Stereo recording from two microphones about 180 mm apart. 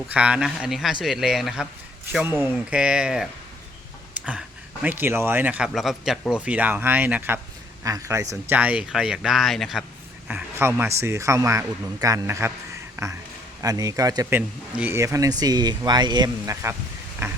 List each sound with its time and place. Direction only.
0.1 s speech: 5° right (ahead or behind)
10.2 s a man's voice: 10° right (ahead or behind)